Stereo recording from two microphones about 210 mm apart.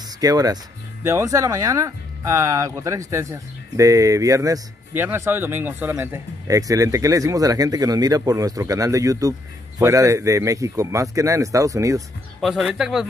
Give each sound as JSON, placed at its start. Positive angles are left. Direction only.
{"t": 0.2, "sound": "speech", "side_deg": -15}
{"t": 12.4, "sound": "speech", "side_deg": 0}